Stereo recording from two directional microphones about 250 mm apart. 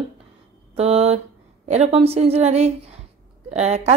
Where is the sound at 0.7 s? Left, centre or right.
Right.